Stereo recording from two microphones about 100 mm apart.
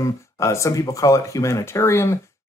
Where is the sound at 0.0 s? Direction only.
30° left (ahead or behind).